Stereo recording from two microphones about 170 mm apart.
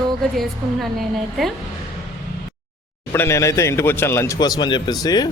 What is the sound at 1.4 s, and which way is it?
Speech, centre (ahead or behind).